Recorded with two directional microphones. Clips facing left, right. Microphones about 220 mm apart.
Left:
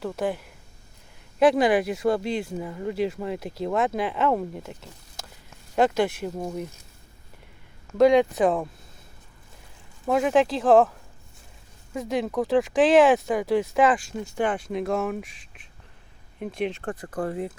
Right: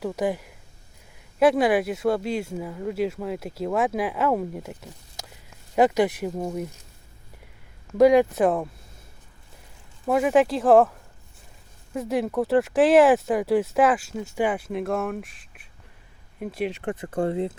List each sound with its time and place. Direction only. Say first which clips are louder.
0.0 s speech: right 2 dB; 10° right (ahead or behind)
7.9 s speech: right 1 dB; 10° right (ahead or behind)
10.1 s speech: right 1 dB; 5° right (ahead or behind)
16.8 s speech: right 4 dB; 25° right (ahead or behind)